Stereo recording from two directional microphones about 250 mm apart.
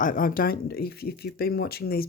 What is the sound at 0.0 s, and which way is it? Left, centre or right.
Speech, left.